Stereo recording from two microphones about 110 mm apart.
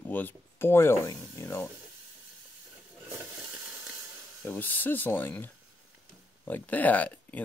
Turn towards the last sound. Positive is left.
turn(degrees=15)  # may be behind; listen again after turning